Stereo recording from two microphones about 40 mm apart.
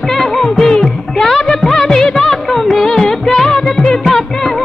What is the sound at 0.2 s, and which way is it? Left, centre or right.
Music, centre.